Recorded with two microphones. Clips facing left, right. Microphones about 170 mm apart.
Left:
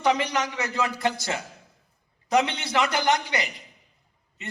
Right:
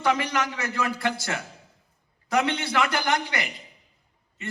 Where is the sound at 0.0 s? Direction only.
20° left (ahead or behind).